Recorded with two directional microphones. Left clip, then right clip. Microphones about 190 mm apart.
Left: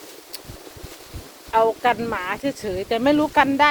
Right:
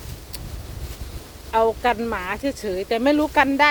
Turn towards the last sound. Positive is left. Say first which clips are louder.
# even
turn(degrees=-15)  # may be behind; listen again after turning